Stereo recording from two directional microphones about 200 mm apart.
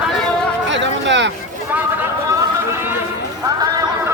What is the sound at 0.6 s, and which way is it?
Speech, 65° right (ahead or behind).